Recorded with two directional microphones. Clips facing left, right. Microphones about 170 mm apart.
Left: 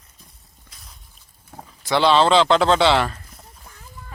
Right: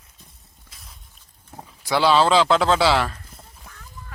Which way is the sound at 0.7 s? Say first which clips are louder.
Even; centre (ahead or behind).